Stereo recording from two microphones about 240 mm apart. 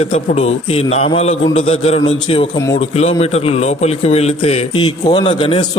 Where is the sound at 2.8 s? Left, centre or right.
Left.